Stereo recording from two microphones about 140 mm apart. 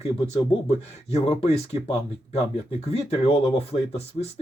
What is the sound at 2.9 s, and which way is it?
Speech, 45° left (ahead or behind).